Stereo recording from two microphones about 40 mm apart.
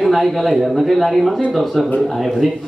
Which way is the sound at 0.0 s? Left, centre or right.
Centre.